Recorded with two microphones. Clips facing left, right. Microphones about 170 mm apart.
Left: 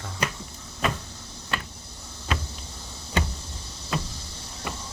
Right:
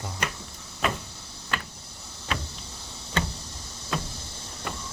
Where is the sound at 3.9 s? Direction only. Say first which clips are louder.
Left 1 dB; centre (ahead or behind).